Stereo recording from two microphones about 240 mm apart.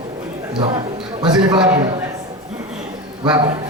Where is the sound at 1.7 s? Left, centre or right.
Centre.